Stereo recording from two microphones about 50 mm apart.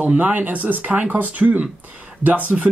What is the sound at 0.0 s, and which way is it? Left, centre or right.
Speech, right.